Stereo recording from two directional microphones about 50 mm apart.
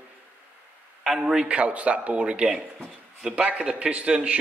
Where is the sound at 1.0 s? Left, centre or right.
Centre.